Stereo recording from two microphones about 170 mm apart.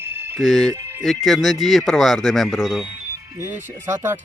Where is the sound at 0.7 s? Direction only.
15° right (ahead or behind).